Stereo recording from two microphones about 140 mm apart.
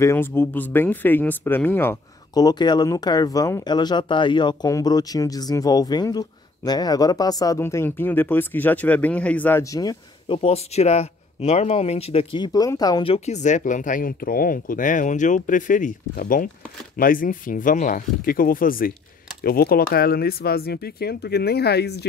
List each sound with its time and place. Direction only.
0.0 s speech: 15° left (ahead or behind)
2.3 s speech: 30° left (ahead or behind)
10.2 s speech: 40° left (ahead or behind)
13.0 s speech: 50° left (ahead or behind); by 21.2 s 90° left